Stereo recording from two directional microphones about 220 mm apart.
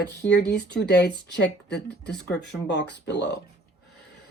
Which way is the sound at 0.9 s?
50° left (ahead or behind).